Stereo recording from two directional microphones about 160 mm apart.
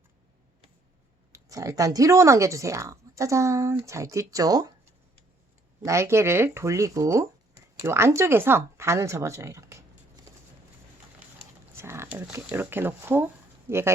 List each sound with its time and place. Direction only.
1.3 s speech: 20° right (ahead or behind)
5.8 s speech: 15° right (ahead or behind)
11.7 s speech: 15° right (ahead or behind)